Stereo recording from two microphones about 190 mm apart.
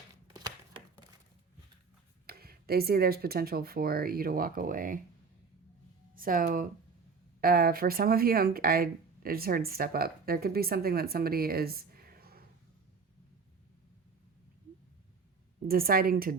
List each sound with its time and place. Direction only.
2.2 s speech: 55° right (ahead or behind)
6.1 s speech: 50° right (ahead or behind)
15.6 s speech: 50° right (ahead or behind)